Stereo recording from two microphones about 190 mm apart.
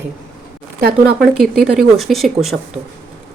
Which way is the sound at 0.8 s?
55° right (ahead or behind).